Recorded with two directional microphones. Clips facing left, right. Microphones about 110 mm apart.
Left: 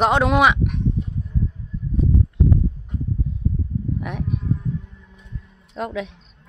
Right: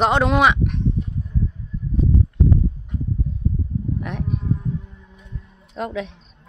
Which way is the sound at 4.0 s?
5° left (ahead or behind).